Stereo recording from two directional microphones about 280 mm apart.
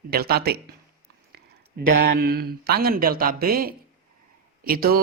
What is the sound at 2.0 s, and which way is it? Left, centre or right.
Speech, right.